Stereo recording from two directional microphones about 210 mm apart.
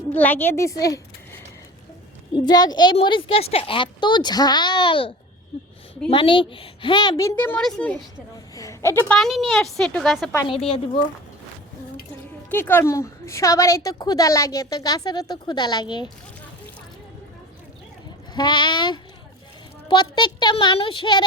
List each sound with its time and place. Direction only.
0.1 s a woman's voice: 10° left (ahead or behind)
9.1 s speech: centre (ahead or behind)
12.5 s a woman's voice: 10° left (ahead or behind)
18.3 s a woman's voice: 20° left (ahead or behind)